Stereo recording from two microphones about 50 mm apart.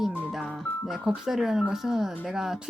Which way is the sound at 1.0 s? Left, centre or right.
Centre.